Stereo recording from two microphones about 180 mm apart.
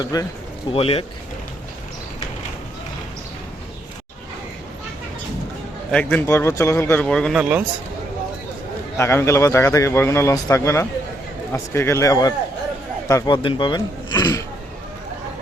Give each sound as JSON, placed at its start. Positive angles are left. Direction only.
{"t": 0.0, "sound": "speech", "side_deg": 20}
{"t": 0.7, "sound": "speech", "side_deg": 30}
{"t": 5.9, "sound": "a man's voice", "side_deg": 5}
{"t": 9.0, "sound": "a man's voice", "side_deg": 15}